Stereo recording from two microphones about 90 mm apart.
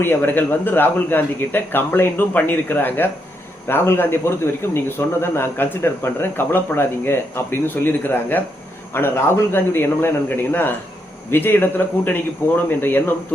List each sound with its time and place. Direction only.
0.0 s speech: 25° left (ahead or behind)